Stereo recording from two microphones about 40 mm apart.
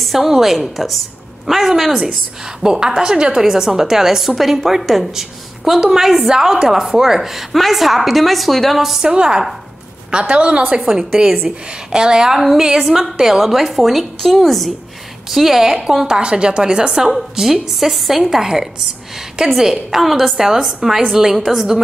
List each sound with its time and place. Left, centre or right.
0.0 s a woman's voice: centre
9.0 s a woman's voice: right
10.9 s a woman's voice: centre
12.4 s a woman's voice: centre
16.1 s a woman's voice: right; by 21.7 s centre